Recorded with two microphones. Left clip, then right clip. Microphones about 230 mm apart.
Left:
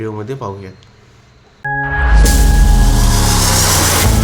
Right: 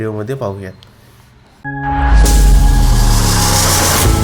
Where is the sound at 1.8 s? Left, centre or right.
Centre.